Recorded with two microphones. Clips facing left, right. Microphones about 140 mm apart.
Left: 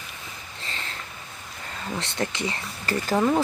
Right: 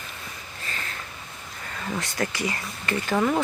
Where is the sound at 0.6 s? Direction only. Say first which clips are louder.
Right 1 dB; 25° left (ahead or behind).